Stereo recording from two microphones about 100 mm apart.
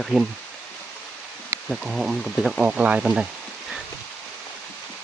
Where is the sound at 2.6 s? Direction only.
10° right (ahead or behind).